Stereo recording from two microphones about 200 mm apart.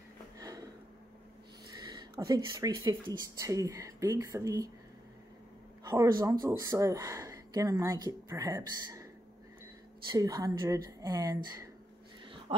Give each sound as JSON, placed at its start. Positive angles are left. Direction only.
{"t": 0.4, "sound": "a sound", "side_deg": -15}
{"t": 1.8, "sound": "speech", "side_deg": -20}
{"t": 5.9, "sound": "speech", "side_deg": -20}
{"t": 10.1, "sound": "speech", "side_deg": -20}